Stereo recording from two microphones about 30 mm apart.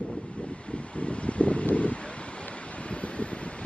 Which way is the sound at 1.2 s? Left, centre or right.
Left.